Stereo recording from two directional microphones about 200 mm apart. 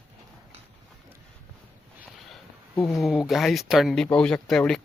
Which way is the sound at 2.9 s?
Centre (ahead or behind).